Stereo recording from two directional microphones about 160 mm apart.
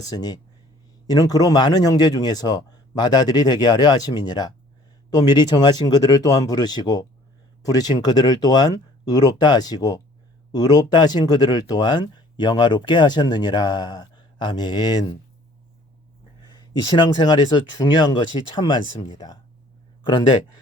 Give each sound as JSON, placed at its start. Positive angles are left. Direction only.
{"t": 0.0, "sound": "speech", "side_deg": 25}
{"t": 16.6, "sound": "speech", "side_deg": 25}